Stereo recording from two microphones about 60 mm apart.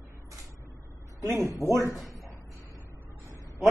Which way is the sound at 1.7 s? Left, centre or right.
Left.